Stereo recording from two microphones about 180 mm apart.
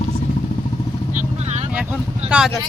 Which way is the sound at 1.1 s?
40° right (ahead or behind).